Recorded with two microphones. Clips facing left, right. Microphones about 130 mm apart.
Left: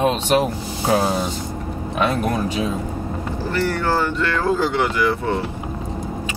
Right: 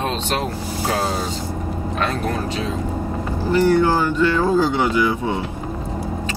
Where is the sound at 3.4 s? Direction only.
15° right (ahead or behind).